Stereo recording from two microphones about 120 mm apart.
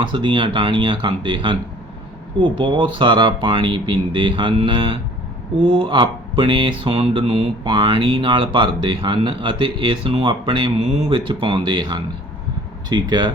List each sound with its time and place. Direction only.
0.0 s speech: 45° right (ahead or behind)